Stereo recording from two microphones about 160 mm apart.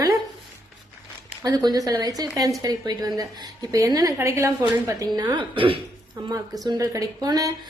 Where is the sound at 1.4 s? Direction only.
25° right (ahead or behind).